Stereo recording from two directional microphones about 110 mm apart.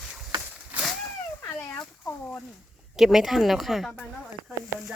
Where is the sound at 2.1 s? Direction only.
20° left (ahead or behind).